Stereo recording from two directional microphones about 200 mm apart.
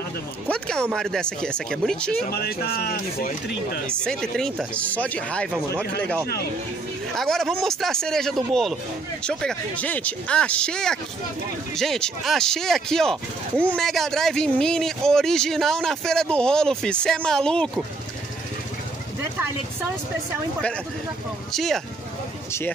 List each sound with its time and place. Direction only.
0.5 s speech: 5° left (ahead or behind)
2.2 s speech: 50° left (ahead or behind)
3.8 s speech: 5° left (ahead or behind)
7.2 s speech: centre (ahead or behind)
21.5 s speech: centre (ahead or behind)